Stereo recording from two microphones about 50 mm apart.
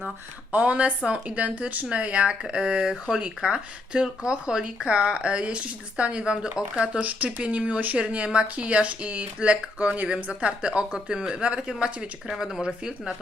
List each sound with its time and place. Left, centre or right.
0.5 s speech: right
12.3 s speech: centre